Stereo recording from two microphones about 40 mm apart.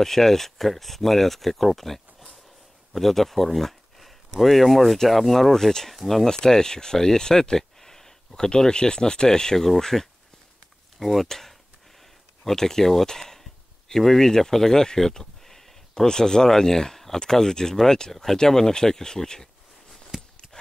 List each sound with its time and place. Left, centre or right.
0.0 s speech: centre
6.2 s speech: centre
11.0 s speech: centre
20.1 s a sound: centre